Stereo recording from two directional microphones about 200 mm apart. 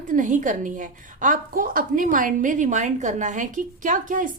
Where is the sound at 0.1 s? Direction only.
40° right (ahead or behind).